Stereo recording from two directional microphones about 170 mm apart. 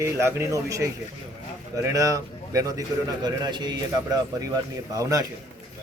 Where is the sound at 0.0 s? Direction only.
15° right (ahead or behind).